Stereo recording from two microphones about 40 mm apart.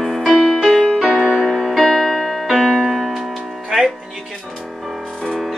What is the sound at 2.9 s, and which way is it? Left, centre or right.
Music, centre.